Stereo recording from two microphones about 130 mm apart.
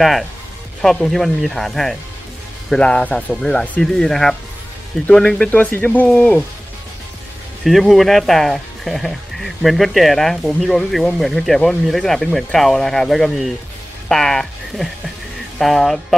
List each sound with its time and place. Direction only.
0.8 s speech: 5° left (ahead or behind)
7.6 s speech: centre (ahead or behind)